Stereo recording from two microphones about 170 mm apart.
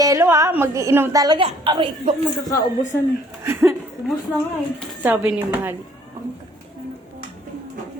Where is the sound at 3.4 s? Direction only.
15° right (ahead or behind).